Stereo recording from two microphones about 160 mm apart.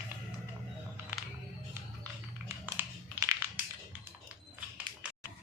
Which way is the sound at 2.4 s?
15° right (ahead or behind).